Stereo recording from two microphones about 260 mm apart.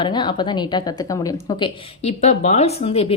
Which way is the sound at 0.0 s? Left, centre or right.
Centre.